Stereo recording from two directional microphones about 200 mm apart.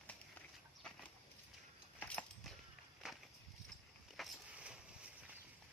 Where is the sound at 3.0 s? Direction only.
5° right (ahead or behind).